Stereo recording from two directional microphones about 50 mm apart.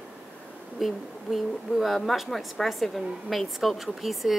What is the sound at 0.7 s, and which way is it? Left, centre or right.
A woman's voice, centre.